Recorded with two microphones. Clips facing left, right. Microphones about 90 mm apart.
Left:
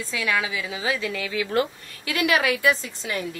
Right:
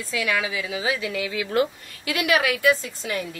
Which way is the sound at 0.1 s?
30° left (ahead or behind).